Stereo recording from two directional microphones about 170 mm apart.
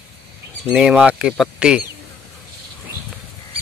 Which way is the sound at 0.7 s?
5° right (ahead or behind).